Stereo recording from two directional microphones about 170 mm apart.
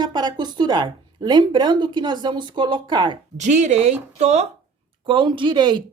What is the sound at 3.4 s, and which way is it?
Speech, 45° right (ahead or behind).